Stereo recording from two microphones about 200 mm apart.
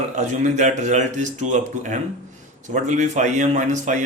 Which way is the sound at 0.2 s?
35° right (ahead or behind).